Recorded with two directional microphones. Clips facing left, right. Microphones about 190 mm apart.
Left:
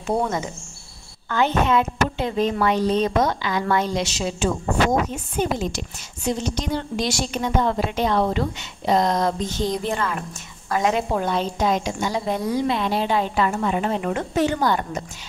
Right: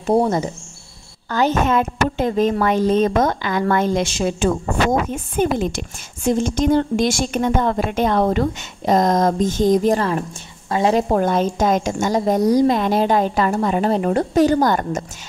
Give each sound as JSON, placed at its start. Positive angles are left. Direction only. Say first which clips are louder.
{"t": 0.0, "sound": "a woman's voice", "louder": "right 6 dB", "side_deg": -35}